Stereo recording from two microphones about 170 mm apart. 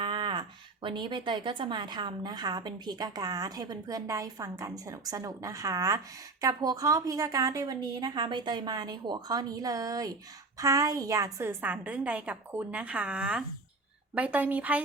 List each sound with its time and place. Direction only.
0.0 s a woman's voice: 25° right (ahead or behind); by 14.8 s 10° right (ahead or behind)